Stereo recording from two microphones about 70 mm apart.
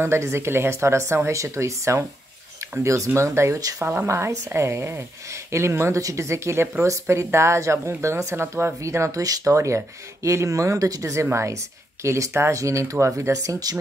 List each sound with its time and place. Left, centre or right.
0.0 s speech: right
3.8 s speech: right